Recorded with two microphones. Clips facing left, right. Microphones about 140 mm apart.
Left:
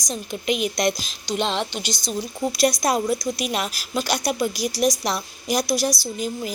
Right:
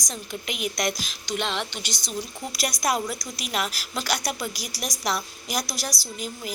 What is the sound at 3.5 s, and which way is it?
A woman's voice, 20° left (ahead or behind).